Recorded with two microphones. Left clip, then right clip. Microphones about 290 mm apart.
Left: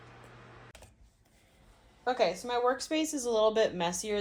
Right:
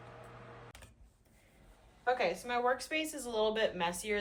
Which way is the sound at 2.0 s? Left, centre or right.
Centre.